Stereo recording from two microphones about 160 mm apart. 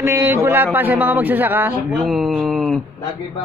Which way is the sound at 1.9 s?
Centre (ahead or behind).